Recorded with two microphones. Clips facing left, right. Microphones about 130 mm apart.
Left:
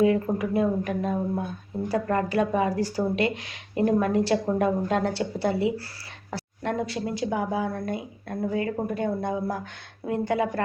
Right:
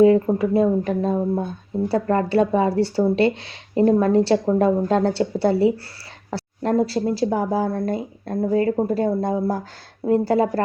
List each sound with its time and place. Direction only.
0.0 s speech: 30° right (ahead or behind)